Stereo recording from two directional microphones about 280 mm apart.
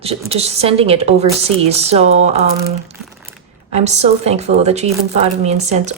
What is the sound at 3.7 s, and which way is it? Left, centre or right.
Speech, right.